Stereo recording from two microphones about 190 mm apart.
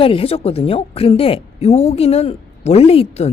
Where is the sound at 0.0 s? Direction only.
30° left (ahead or behind).